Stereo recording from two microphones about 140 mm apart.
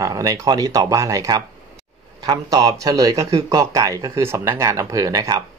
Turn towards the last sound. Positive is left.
turn(degrees=-25)  # may be behind; listen again after turning